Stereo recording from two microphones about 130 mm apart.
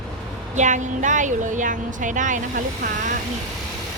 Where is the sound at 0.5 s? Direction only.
70° right (ahead or behind).